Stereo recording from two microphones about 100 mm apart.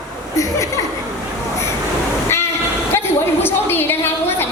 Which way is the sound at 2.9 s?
25° left (ahead or behind).